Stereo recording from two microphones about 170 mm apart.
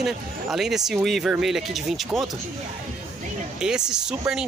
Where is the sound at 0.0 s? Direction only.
Centre (ahead or behind).